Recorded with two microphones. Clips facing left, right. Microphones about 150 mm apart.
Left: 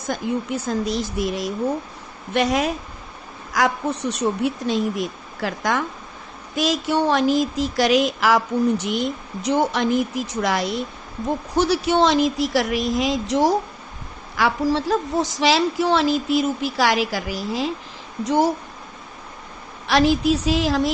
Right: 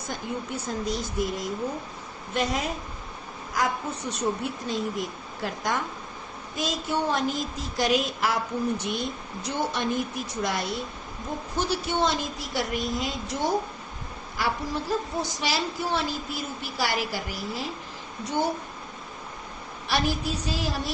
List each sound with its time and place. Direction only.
0.1 s a woman's voice: 90° left
2.3 s a woman's voice: 75° left (ahead or behind)
3.5 s a woman's voice: 90° left
19.9 s a woman's voice: 90° left